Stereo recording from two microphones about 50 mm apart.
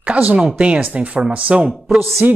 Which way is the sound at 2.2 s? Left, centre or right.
Right.